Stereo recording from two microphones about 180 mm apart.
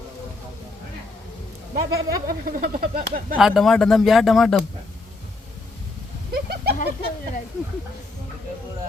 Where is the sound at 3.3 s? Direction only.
5° right (ahead or behind).